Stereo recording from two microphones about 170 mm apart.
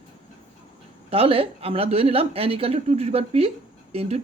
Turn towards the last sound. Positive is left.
turn(degrees=-35)  # may be behind; listen again after turning